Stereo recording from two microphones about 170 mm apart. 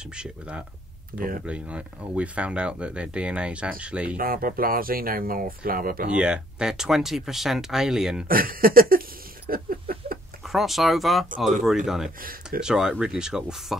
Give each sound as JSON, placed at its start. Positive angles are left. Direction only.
{"t": 0.0, "sound": "speech", "side_deg": -5}
{"t": 1.1, "sound": "speech", "side_deg": -55}
{"t": 1.4, "sound": "speech", "side_deg": -5}
{"t": 4.2, "sound": "speech", "side_deg": -60}
{"t": 6.0, "sound": "speech", "side_deg": -5}
{"t": 8.3, "sound": "speech", "side_deg": -60}
{"t": 9.5, "sound": "a sound", "side_deg": -60}
{"t": 10.4, "sound": "speech", "side_deg": 0}